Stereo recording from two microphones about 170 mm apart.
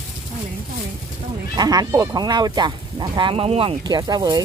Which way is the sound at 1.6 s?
20° right (ahead or behind).